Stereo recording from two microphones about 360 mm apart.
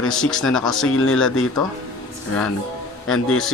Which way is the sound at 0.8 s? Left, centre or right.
Left.